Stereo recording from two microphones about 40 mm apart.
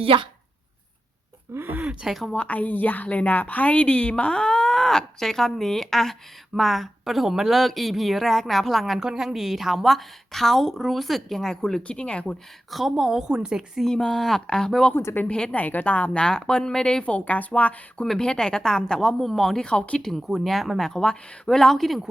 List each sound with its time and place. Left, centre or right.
1.5 s a sound: right
2.3 s a woman's voice: left; by 9.0 s centre
9.0 s a woman's voice: centre
11.8 s speech: left
12.7 s a woman's voice: centre
13.8 s a woman's voice: centre
14.4 s speech: centre
15.0 s speech: left
15.5 s a woman's voice: left
16.2 s speech: centre
18.0 s speech: centre
19.5 s speech: left
20.1 s a woman's voice: centre
20.8 s a woman's voice: centre